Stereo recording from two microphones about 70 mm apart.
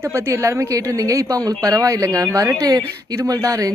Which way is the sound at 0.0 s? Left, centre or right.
Right.